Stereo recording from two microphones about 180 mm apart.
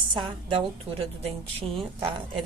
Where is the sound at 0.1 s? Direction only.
30° right (ahead or behind).